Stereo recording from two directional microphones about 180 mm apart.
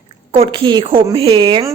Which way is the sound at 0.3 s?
30° right (ahead or behind).